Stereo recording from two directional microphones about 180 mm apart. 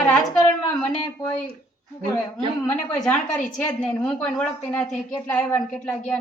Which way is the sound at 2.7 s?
5° left (ahead or behind).